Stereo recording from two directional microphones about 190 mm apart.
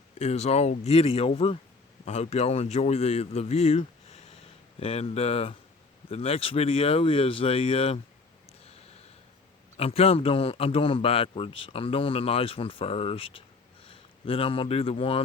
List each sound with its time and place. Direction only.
0.2 s a man's voice: 35° left (ahead or behind)
9.7 s a man's voice: 30° left (ahead or behind)